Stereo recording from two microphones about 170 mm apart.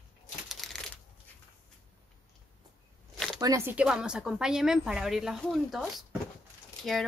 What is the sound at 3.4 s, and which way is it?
Speech, 20° right (ahead or behind).